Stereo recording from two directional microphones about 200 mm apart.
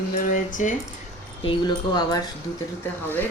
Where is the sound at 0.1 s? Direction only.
40° left (ahead or behind).